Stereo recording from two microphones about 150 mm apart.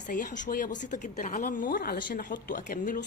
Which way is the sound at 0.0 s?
60° left (ahead or behind).